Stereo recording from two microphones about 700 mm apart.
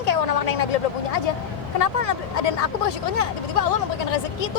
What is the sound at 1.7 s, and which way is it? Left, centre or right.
Speech, left.